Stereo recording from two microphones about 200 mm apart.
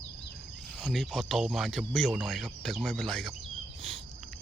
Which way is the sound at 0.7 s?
Centre (ahead or behind).